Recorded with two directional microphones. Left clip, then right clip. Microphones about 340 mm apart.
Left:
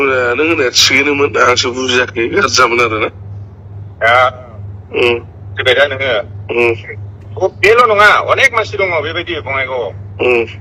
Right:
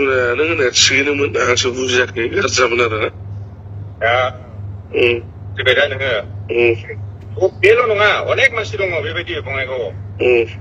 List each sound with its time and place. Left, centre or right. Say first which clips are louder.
0.0 s a man's voice: left 3 dB; left